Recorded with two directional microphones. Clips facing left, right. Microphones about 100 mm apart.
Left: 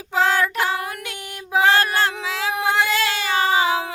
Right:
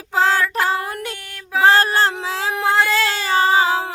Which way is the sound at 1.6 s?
35° right (ahead or behind).